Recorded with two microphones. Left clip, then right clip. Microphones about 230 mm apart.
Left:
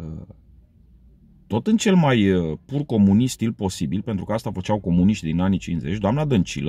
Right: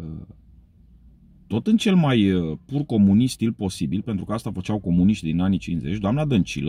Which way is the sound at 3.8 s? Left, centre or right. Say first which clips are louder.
Even; left.